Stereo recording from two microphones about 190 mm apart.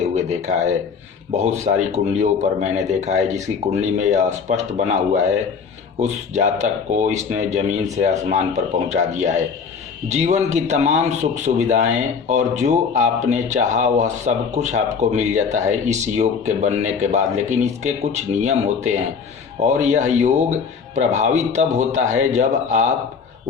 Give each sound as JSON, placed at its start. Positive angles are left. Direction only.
{"t": 0.2, "sound": "a man's voice", "side_deg": -40}
{"t": 8.9, "sound": "a man's voice", "side_deg": -35}